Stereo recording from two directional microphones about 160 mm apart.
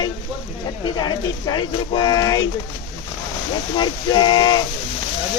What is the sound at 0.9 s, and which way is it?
Speech, 25° left (ahead or behind).